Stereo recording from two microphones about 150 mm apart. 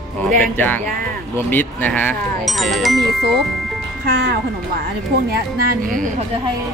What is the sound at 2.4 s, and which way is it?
Speech, centre (ahead or behind).